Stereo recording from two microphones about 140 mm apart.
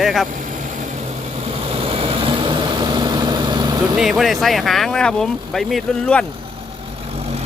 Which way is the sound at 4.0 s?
Centre (ahead or behind).